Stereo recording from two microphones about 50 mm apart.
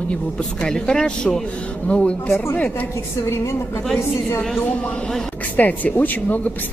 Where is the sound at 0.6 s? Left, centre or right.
Centre.